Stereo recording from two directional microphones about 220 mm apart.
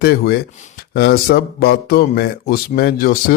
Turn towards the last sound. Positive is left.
turn(degrees=45)  # may be behind; listen again after turning